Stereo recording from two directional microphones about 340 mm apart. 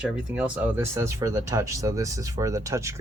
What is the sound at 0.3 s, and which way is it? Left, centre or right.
Speech, centre.